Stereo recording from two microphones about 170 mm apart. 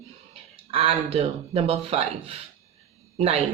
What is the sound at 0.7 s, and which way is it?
Speech, 35° right (ahead or behind).